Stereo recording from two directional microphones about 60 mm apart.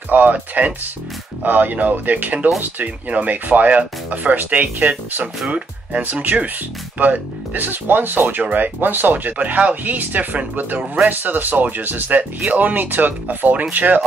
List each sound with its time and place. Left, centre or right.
0.1 s speech: right